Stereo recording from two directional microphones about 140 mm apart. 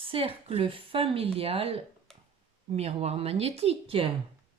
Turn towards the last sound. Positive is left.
turn(degrees=-45)  # may be behind; listen again after turning